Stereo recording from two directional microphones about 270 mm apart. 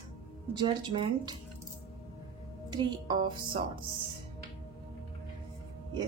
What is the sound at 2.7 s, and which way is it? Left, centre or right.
A woman's voice, centre.